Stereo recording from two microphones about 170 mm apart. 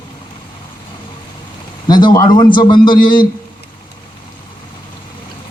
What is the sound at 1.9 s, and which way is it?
A man's voice, 25° left (ahead or behind).